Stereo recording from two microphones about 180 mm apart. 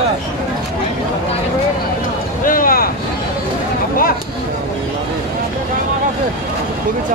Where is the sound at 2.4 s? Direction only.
50° left (ahead or behind).